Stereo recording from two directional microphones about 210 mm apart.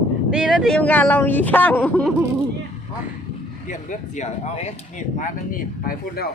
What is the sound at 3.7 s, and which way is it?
Speech, 35° left (ahead or behind).